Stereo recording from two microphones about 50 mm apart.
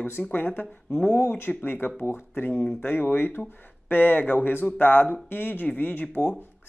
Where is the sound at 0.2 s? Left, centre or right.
Left.